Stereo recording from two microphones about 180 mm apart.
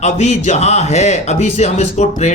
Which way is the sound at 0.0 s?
40° left (ahead or behind).